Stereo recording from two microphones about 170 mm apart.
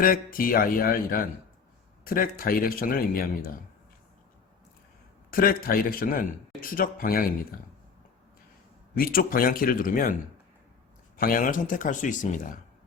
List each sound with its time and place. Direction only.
0.0 s speech: 55° left (ahead or behind)
5.3 s speech: 60° left (ahead or behind)
9.0 s speech: 60° left (ahead or behind)
11.2 s speech: 55° left (ahead or behind)